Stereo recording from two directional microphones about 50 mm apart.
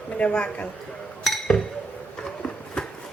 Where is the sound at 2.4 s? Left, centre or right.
Centre.